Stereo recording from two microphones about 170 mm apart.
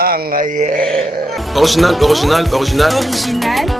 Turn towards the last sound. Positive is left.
turn(degrees=0)  # may be behind; listen again after turning